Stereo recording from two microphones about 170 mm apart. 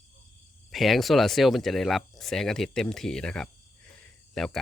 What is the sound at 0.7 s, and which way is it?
Speech, centre (ahead or behind).